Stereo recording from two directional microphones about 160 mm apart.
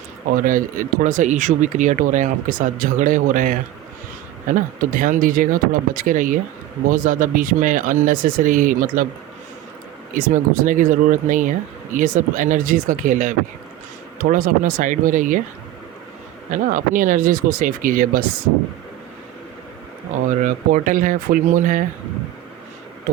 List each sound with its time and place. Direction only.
0.4 s speech: 55° right (ahead or behind)
10.2 s speech: 60° right (ahead or behind)
16.5 s speech: 55° right (ahead or behind)
20.4 s speech: 55° right (ahead or behind)